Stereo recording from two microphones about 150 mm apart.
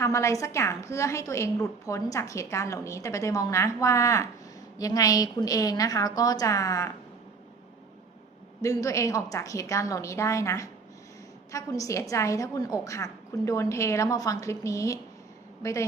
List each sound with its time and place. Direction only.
0.0 s a woman's voice: 20° left (ahead or behind)
8.6 s a woman's voice: 20° left (ahead or behind)